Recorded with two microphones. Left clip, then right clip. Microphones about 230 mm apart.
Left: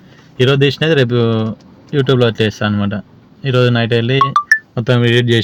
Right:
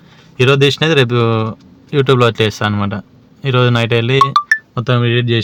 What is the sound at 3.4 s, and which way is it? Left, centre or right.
Speech, right.